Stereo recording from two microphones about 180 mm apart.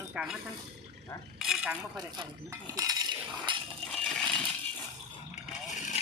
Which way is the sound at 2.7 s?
20° right (ahead or behind).